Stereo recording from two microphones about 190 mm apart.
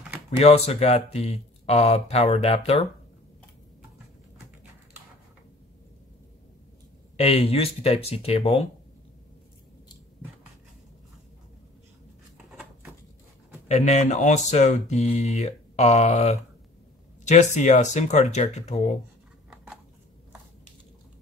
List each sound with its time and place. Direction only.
0.4 s speech: 35° left (ahead or behind)
7.2 s speech: 30° left (ahead or behind)
13.7 s speech: 35° left (ahead or behind)